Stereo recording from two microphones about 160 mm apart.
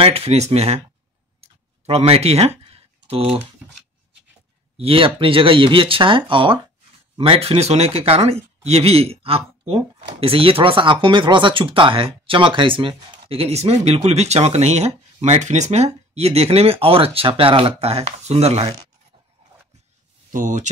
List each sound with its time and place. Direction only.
0.0 s speech: 40° right (ahead or behind)
1.4 s a sound: 40° right (ahead or behind)
4.7 s speech: 35° right (ahead or behind)
20.2 s speech: 55° right (ahead or behind)